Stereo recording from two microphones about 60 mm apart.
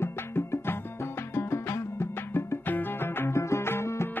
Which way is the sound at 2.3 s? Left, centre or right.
Left.